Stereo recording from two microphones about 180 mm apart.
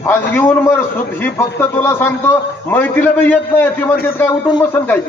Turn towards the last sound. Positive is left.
turn(degrees=10)  # may be behind; listen again after turning